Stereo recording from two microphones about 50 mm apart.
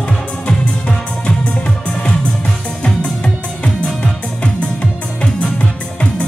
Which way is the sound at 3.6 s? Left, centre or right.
Left.